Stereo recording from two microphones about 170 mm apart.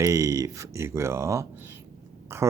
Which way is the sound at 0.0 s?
20° right (ahead or behind).